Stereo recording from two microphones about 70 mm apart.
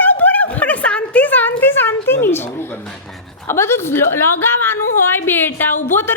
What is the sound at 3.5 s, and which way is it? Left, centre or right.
A woman's voice, left.